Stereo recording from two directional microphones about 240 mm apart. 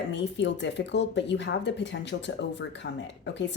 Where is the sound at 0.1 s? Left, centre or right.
Left.